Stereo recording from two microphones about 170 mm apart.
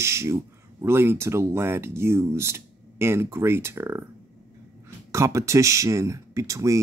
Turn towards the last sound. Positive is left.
turn(degrees=-20)  # may be behind; listen again after turning